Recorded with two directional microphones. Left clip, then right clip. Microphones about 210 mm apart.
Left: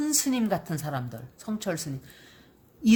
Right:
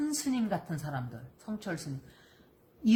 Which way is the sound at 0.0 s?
50° left (ahead or behind).